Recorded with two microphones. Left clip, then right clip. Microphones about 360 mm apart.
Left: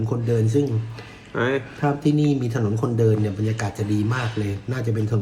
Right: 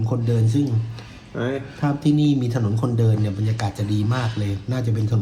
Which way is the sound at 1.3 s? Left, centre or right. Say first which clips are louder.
Left 4 dB; left.